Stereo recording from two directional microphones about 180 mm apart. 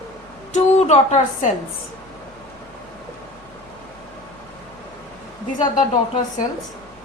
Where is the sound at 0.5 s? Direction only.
40° left (ahead or behind).